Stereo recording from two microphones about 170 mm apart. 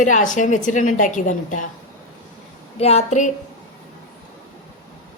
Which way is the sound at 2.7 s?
40° left (ahead or behind).